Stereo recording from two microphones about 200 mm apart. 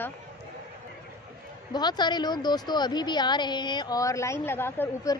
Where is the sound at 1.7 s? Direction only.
20° left (ahead or behind).